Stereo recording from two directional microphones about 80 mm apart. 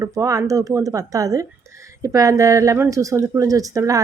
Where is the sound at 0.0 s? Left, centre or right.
Right.